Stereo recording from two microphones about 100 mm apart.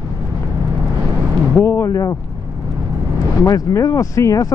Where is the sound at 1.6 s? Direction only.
25° left (ahead or behind).